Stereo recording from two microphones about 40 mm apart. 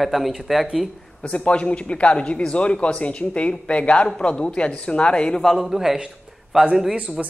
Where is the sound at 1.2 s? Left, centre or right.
Left.